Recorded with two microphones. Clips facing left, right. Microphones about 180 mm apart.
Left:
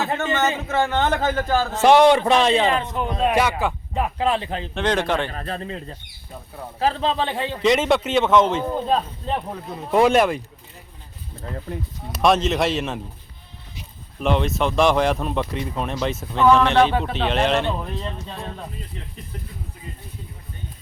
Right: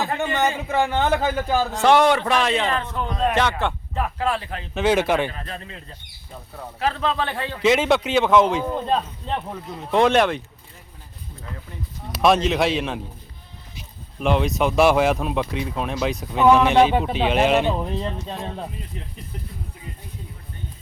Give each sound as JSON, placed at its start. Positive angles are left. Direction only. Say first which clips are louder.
{"t": 0.0, "sound": "a man's voice", "louder": "even", "side_deg": -15}
{"t": 1.8, "sound": "a man's voice", "louder": "left 4 dB", "side_deg": 20}
{"t": 2.6, "sound": "speech", "louder": "left 3 dB", "side_deg": 15}
{"t": 3.9, "sound": "a man's voice", "louder": "left 4 dB", "side_deg": 20}
{"t": 4.7, "sound": "a man's voice", "louder": "right 3 dB", "side_deg": -5}
{"t": 5.3, "sound": "a man's voice", "louder": "left 6 dB", "side_deg": 40}
{"t": 7.6, "sound": "speech", "louder": "even", "side_deg": 0}
{"t": 12.1, "sound": "speech", "louder": "even", "side_deg": 0}
{"t": 14.2, "sound": "a man's voice", "louder": "right 1 dB", "side_deg": 0}